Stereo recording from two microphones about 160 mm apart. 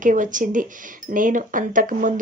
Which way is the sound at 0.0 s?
55° right (ahead or behind).